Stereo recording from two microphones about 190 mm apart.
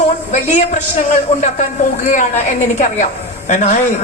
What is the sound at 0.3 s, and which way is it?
A woman's voice, 40° left (ahead or behind).